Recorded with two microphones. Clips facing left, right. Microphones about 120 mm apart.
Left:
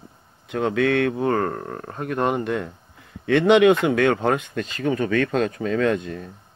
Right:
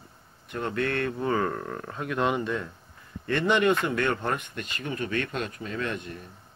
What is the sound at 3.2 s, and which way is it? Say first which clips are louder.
Speech: left 8 dB; 90° left.